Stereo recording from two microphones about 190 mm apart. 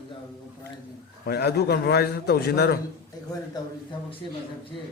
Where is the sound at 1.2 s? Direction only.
60° left (ahead or behind).